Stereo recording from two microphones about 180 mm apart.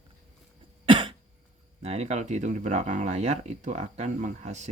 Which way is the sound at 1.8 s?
35° right (ahead or behind).